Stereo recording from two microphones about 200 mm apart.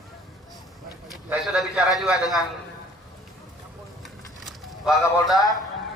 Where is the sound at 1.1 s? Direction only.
5° right (ahead or behind).